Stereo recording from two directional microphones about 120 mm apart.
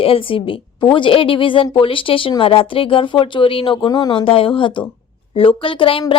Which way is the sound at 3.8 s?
35° left (ahead or behind).